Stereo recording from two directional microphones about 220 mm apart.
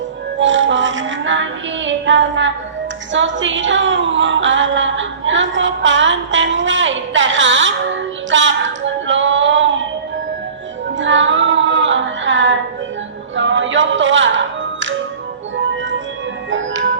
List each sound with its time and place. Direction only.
0.3 s music: 55° right (ahead or behind)
3.1 s a woman's voice: 55° right (ahead or behind)
8.3 s music: 55° right (ahead or behind)
10.9 s female singing: 55° right (ahead or behind)
13.3 s music: 55° right (ahead or behind)
16.5 s music: 60° right (ahead or behind)